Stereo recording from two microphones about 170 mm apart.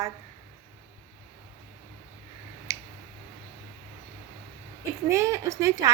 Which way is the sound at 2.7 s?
15° right (ahead or behind).